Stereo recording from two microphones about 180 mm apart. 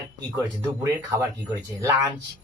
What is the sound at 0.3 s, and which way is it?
Speech, 15° right (ahead or behind).